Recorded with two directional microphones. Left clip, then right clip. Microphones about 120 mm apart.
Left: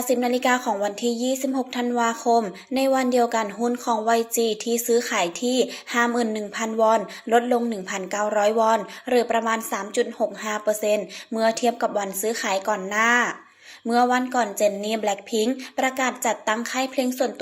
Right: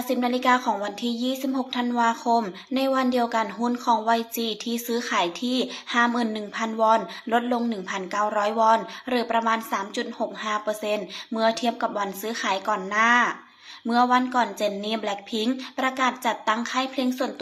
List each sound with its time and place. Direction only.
0.1 s speech: 30° left (ahead or behind)